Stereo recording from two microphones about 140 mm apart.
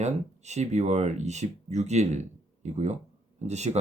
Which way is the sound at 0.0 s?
55° right (ahead or behind).